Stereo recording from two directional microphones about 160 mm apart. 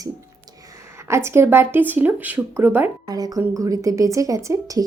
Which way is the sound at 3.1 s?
25° right (ahead or behind).